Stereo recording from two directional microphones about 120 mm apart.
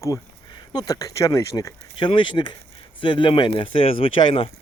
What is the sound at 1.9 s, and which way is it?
Speech, 40° left (ahead or behind).